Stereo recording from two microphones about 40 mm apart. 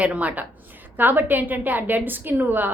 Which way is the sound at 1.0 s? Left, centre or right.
Right.